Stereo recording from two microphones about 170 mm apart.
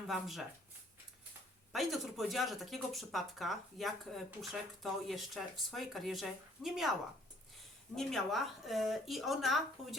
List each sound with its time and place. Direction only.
0.1 s speech: centre (ahead or behind)
1.7 s speech: centre (ahead or behind)
7.9 s speech: centre (ahead or behind)